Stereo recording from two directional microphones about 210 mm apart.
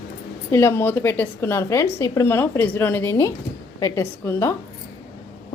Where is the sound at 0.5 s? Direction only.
10° left (ahead or behind).